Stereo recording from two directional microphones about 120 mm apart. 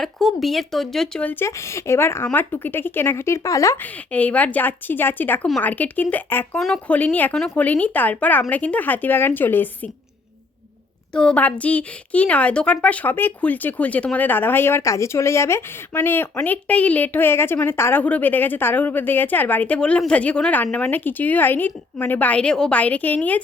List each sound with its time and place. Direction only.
0.0 s speech: centre (ahead or behind); by 3.8 s 25° left (ahead or behind)
4.1 s speech: 10° left (ahead or behind)
11.1 s speech: 5° left (ahead or behind)